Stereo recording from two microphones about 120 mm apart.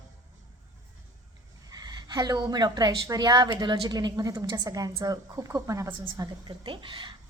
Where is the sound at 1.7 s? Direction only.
35° right (ahead or behind).